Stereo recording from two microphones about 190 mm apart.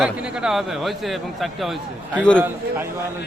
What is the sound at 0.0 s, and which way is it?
A man's voice, 5° right (ahead or behind).